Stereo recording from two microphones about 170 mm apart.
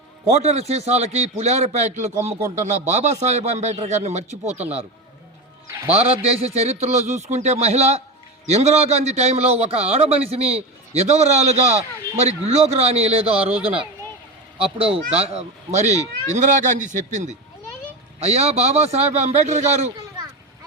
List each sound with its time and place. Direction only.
0.3 s a man's voice: 40° right (ahead or behind)
5.9 s a man's voice: 35° right (ahead or behind)
14.8 s a man's voice: 35° right (ahead or behind)